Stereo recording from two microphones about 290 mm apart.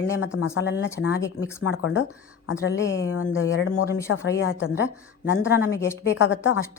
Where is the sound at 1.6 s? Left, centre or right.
Left.